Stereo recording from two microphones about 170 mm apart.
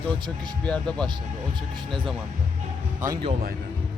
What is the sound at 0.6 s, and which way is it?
Speech, 5° left (ahead or behind).